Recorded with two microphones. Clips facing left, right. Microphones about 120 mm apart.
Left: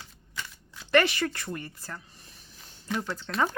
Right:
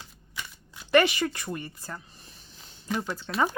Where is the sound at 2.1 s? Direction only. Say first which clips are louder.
Right 1 dB; 25° right (ahead or behind).